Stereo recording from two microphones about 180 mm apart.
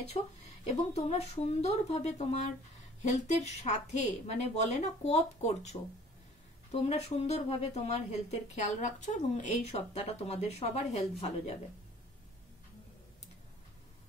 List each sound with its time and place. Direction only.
0.7 s speech: 35° left (ahead or behind)